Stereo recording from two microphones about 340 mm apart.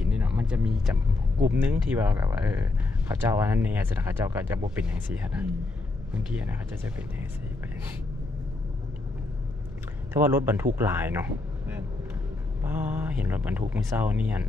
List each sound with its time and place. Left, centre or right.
0.0 s a sound: centre
1.4 s speech: centre
10.1 s speech: centre